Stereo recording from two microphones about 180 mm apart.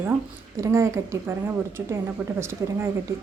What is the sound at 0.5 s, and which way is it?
A woman's voice, 15° right (ahead or behind).